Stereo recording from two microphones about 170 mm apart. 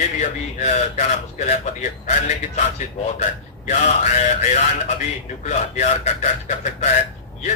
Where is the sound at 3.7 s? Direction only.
45° left (ahead or behind).